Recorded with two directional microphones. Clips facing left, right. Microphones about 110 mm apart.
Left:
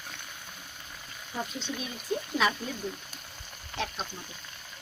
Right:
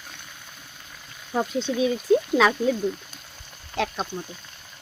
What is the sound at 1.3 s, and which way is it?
Speech, 90° right.